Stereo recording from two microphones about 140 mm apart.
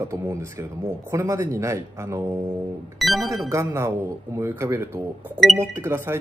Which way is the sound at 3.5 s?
20° right (ahead or behind).